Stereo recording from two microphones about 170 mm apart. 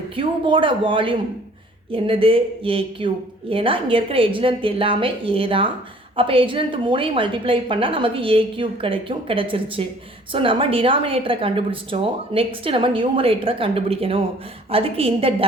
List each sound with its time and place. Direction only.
0.2 s speech: 30° right (ahead or behind)